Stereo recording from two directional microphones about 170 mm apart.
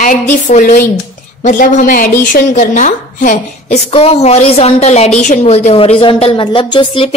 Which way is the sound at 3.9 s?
35° left (ahead or behind).